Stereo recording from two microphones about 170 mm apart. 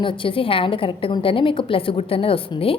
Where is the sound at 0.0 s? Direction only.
30° left (ahead or behind).